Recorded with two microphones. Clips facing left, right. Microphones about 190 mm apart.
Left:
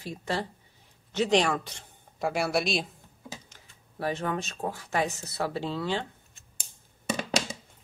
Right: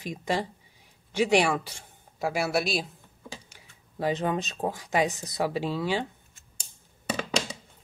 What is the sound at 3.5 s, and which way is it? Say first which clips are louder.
Speech: right 3 dB; 15° right (ahead or behind).